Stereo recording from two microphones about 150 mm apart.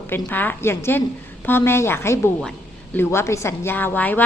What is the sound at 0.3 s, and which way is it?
A woman's voice, 10° left (ahead or behind).